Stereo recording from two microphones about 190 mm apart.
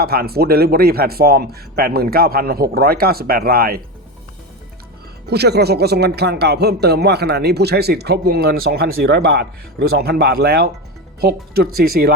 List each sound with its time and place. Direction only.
0.0 s speech: 55° right (ahead or behind)
5.3 s speech: 60° right (ahead or behind)